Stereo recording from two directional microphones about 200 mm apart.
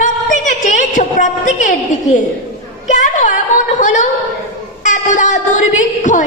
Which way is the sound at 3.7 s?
35° left (ahead or behind).